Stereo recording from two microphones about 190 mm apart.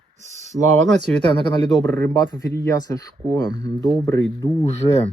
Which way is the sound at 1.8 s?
10° left (ahead or behind).